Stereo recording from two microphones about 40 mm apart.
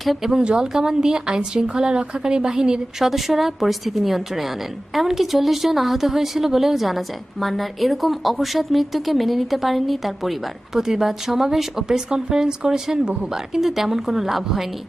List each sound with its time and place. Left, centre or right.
0.0 s speech: centre
0.4 s speech: centre
3.0 s a woman's voice: centre